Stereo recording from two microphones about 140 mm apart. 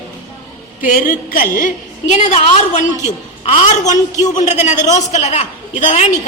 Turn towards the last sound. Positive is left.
turn(degrees=50)  # may be behind; listen again after turning